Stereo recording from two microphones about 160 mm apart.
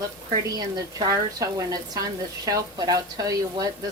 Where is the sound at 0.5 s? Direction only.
20° right (ahead or behind).